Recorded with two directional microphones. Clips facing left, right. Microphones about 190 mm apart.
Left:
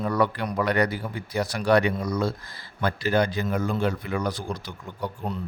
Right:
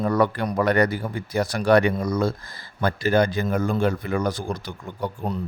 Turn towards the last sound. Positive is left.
turn(degrees=-50)  # may be behind; listen again after turning